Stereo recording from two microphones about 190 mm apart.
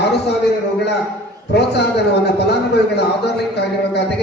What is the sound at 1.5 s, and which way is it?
Speech, 60° left (ahead or behind).